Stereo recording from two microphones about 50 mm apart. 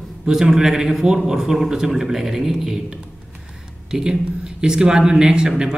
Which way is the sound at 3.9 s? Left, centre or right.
Centre.